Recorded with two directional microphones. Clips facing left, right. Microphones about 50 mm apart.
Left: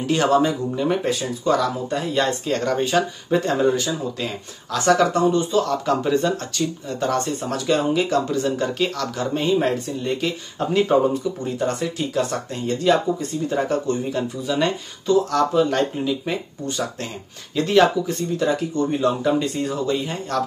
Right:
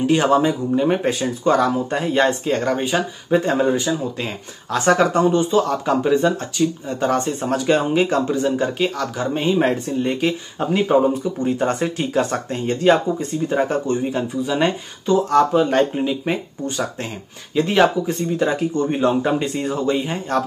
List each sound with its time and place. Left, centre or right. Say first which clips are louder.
0.0 s speech: right 2 dB; centre
1.0 s speech: right 3 dB; right; by 11.0 s centre
11.4 s speech: right 7 dB; right